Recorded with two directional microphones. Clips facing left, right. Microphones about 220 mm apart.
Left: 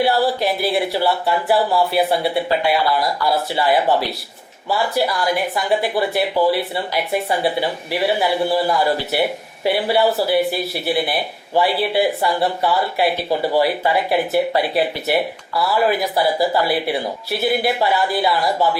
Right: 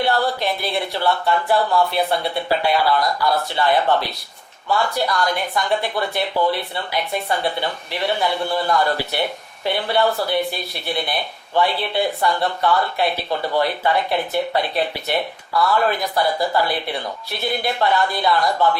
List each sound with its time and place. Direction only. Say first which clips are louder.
0.0 s speech: left 3 dB; 5° left (ahead or behind)